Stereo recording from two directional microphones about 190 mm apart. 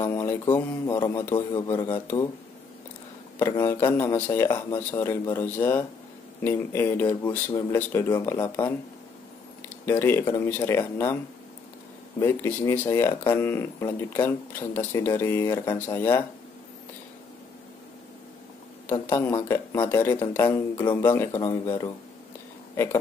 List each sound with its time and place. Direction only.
0.0 s speech: 15° left (ahead or behind)
3.3 s speech: 15° left (ahead or behind)
9.8 s speech: 10° left (ahead or behind)
12.2 s speech: 10° left (ahead or behind)
18.9 s speech: 10° left (ahead or behind)
20.8 s speech: 20° left (ahead or behind)
21.1 s speech: 10° left (ahead or behind)